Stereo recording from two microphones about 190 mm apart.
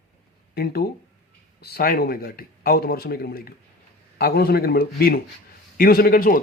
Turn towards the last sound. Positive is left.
turn(degrees=50)  # may be behind; listen again after turning